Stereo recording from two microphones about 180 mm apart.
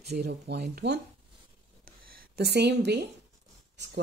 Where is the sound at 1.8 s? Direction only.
55° right (ahead or behind); by 3.0 s 70° right (ahead or behind).